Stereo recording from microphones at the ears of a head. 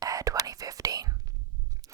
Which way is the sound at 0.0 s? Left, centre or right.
Right.